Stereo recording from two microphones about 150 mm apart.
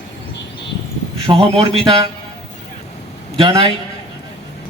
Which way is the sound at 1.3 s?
40° right (ahead or behind).